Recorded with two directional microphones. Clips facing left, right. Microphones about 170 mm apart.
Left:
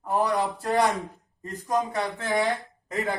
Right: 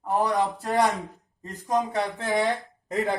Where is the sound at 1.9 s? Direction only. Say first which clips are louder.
Right 1 dB; 25° right (ahead or behind).